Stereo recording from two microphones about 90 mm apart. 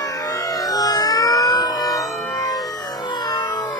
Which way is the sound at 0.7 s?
45° left (ahead or behind).